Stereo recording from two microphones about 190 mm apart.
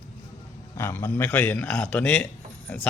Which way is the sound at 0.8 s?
15° left (ahead or behind).